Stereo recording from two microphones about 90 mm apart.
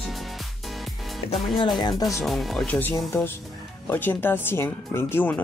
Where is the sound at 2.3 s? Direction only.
Centre (ahead or behind).